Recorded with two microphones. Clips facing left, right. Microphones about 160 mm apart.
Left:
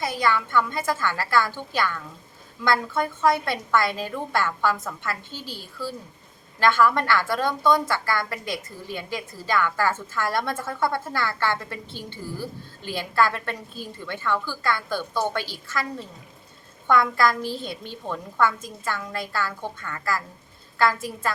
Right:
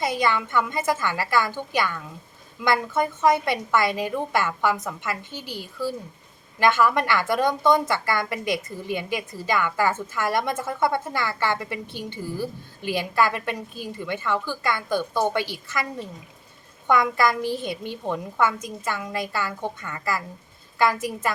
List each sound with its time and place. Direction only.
0.0 s a woman's voice: 20° right (ahead or behind)